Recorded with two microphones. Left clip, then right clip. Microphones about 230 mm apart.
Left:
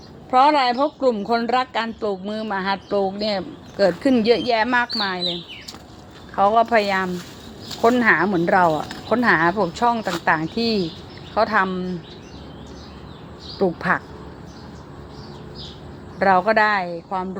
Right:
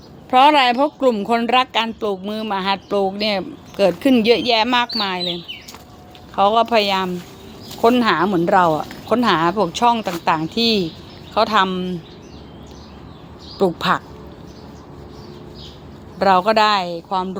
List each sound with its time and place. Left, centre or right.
0.3 s a woman's voice: right
10.5 s speech: centre
11.3 s speech: centre
13.9 s a woman's voice: centre
16.1 s a woman's voice: centre